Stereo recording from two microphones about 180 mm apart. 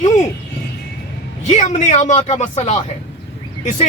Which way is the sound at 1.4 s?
40° left (ahead or behind).